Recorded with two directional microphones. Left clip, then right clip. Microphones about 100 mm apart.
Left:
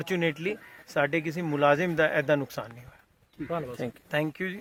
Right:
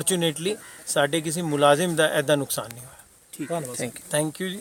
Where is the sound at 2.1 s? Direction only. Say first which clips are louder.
Right 3 dB; 20° left (ahead or behind).